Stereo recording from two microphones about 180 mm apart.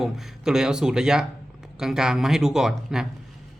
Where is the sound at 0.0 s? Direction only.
5° right (ahead or behind).